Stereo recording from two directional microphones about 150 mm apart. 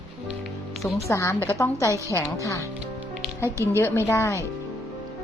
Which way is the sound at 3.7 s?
15° left (ahead or behind).